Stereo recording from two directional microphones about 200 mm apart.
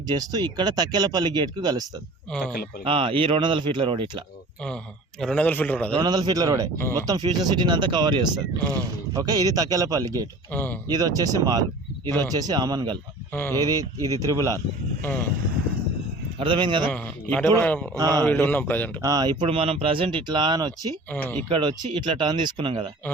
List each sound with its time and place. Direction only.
0.1 s speech: 20° right (ahead or behind)
5.2 s a man's voice: 5° left (ahead or behind)
6.0 s speech: 20° right (ahead or behind)
10.5 s a man's voice: 10° left (ahead or behind)
10.8 s speech: 20° right (ahead or behind)
13.3 s a man's voice: 10° left (ahead or behind)
13.6 s speech: 20° right (ahead or behind)
16.4 s speech: 25° right (ahead or behind)
16.9 s a man's voice: 5° left (ahead or behind)
17.9 s speech: 15° right (ahead or behind)
18.3 s a man's voice: 10° left (ahead or behind)
19.0 s speech: 20° right (ahead or behind)
21.1 s a man's voice: 10° left (ahead or behind)
21.5 s speech: 25° right (ahead or behind)